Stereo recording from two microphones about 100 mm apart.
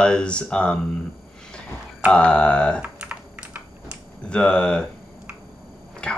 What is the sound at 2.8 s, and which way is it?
Typing, 15° right (ahead or behind).